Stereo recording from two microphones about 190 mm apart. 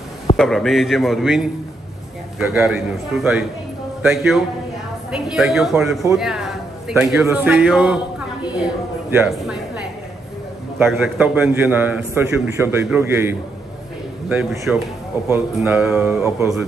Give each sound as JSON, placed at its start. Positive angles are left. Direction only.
{"t": 0.4, "sound": "a man's voice", "side_deg": 0}
{"t": 7.2, "sound": "a man's voice", "side_deg": -10}
{"t": 10.9, "sound": "a man's voice", "side_deg": -5}